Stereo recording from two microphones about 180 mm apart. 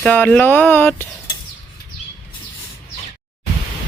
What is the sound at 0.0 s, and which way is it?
Speech, 10° left (ahead or behind).